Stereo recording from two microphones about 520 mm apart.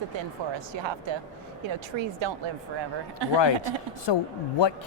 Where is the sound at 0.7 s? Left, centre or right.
Right.